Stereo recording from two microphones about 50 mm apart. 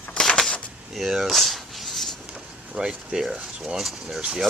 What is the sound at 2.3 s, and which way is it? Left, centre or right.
Vehicle, centre.